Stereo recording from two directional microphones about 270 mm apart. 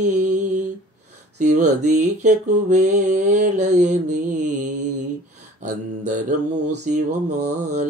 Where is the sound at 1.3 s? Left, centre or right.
Right.